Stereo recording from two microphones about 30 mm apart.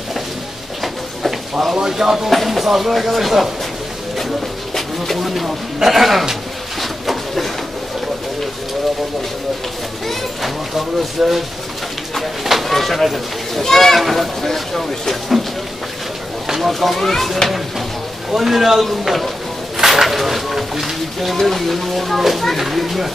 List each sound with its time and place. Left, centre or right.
1.7 s speech: centre
2.2 s speech: centre
4.7 s bird: centre
5.2 s speech: centre
6.8 s bird: centre
11.0 s speech: centre
13.7 s speech: centre
13.9 s speech: centre
16.4 s speech: centre
18.3 s speech: centre
19.8 s a sound: centre
21.4 s speech: centre